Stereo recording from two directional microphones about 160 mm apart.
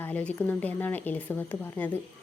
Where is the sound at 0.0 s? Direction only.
10° left (ahead or behind).